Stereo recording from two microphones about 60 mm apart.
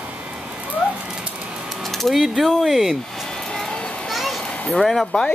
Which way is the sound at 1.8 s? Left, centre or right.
Centre.